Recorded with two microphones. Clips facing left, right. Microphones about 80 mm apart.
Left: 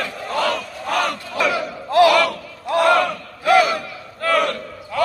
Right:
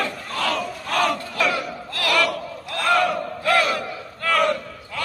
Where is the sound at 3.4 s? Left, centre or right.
Centre.